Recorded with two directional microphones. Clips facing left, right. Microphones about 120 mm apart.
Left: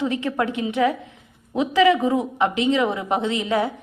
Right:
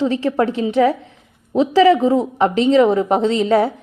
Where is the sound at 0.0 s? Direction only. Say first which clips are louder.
Right 6 dB; 30° right (ahead or behind).